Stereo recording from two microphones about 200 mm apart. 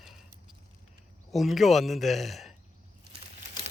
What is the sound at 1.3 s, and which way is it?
Speech, centre (ahead or behind).